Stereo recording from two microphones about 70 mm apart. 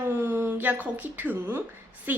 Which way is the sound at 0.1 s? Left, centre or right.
Right.